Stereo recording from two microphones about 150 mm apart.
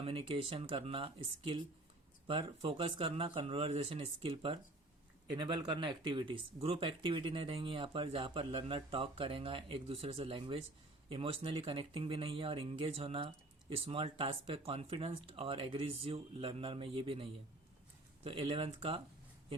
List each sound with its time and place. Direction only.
0.0 s speech: 40° right (ahead or behind)